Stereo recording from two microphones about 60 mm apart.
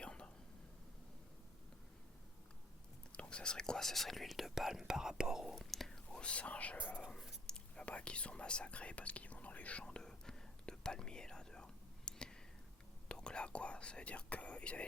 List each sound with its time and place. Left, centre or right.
0.0 s whispering: centre
3.1 s speech: centre
5.7 s speech: centre
6.1 s speech: centre
7.4 s whispering: centre
13.1 s speech: centre